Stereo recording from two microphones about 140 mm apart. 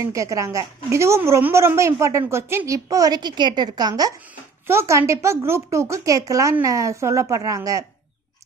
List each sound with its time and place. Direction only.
0.0 s a woman's voice: 20° right (ahead or behind)